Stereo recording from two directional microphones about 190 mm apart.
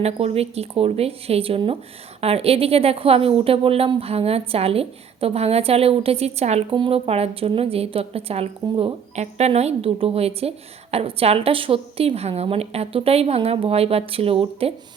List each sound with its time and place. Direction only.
0.0 s a woman's voice: 35° right (ahead or behind)